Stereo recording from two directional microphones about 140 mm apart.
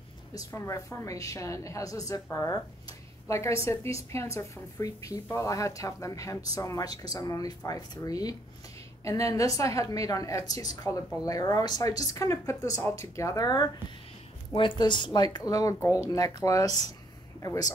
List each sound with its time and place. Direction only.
0.3 s a woman's voice: 25° left (ahead or behind)
14.8 s a woman's voice: 35° left (ahead or behind)